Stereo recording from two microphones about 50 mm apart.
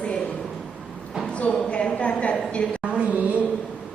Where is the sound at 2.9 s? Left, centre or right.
Right.